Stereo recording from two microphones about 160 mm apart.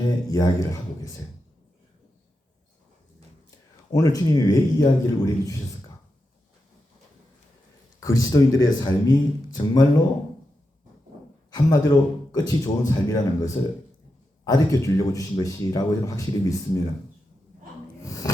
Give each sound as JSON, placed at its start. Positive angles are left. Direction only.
{"t": 0.3, "sound": "speech", "side_deg": 20}
{"t": 3.9, "sound": "speech", "side_deg": 20}
{"t": 8.0, "sound": "speech", "side_deg": 20}
{"t": 11.5, "sound": "speech", "side_deg": 25}
{"t": 18.0, "sound": "a sound", "side_deg": 20}